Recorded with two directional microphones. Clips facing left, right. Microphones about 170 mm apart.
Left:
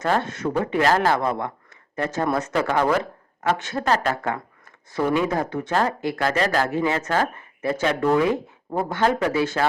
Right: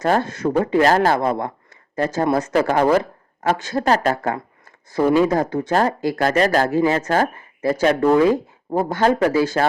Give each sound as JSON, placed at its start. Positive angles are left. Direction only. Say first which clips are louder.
{"t": 0.0, "sound": "speech", "louder": "right 4 dB", "side_deg": -35}